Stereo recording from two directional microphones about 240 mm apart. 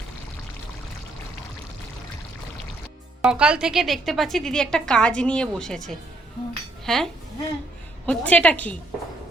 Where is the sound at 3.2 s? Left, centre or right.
Centre.